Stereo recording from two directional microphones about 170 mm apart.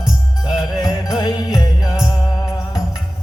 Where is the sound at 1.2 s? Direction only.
25° left (ahead or behind).